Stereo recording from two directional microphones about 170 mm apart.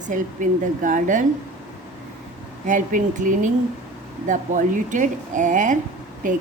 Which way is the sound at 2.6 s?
50° right (ahead or behind).